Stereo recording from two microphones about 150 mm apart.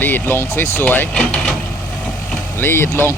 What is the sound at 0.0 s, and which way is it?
Speech, 15° left (ahead or behind).